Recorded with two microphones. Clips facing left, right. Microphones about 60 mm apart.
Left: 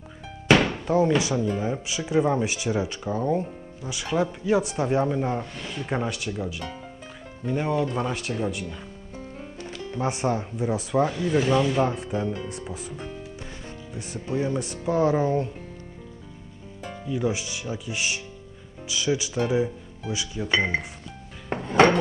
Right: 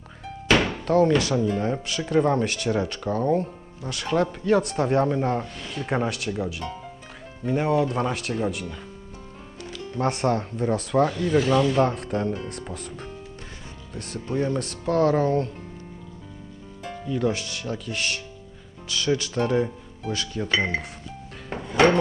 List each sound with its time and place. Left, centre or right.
0.5 s speech: centre
10.0 s speech: centre
17.1 s speech: centre
21.5 s music: left